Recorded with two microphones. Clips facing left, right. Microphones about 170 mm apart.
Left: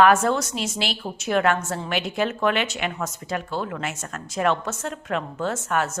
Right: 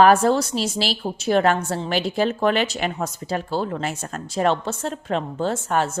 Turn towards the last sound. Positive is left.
turn(degrees=-30)  # may be behind; listen again after turning